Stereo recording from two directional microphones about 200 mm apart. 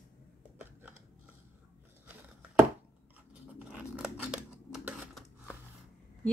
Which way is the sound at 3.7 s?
5° right (ahead or behind).